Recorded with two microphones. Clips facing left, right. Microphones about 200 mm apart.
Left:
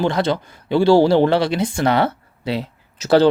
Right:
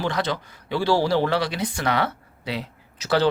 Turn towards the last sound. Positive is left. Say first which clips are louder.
# left 8 dB
turn(degrees=30)  # may be behind; listen again after turning